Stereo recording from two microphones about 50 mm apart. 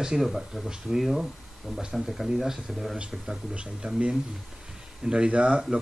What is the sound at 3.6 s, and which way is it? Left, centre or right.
Speech, centre.